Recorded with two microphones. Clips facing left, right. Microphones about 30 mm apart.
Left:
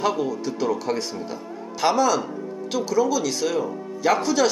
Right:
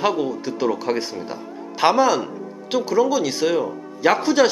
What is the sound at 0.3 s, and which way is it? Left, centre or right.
Speech, centre.